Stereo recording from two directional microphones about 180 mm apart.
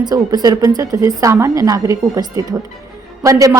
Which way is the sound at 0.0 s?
20° right (ahead or behind).